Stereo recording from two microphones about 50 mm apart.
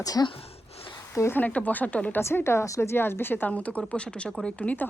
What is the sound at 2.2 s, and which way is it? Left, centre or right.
Speech, left.